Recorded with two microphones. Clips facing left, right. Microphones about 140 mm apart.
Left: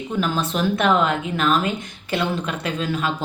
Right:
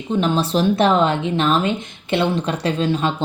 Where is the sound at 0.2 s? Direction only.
30° right (ahead or behind).